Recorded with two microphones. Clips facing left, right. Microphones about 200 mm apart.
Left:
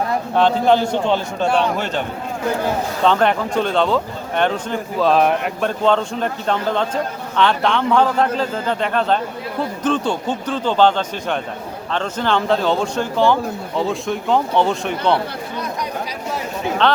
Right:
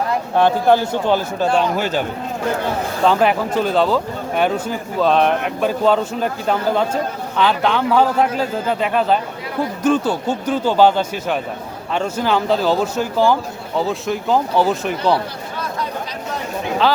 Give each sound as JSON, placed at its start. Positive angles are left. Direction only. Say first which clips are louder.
{"t": 0.3, "sound": "speech", "louder": "right 1 dB", "side_deg": -10}